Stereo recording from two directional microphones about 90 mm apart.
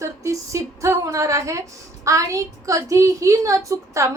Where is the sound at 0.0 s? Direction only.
35° right (ahead or behind).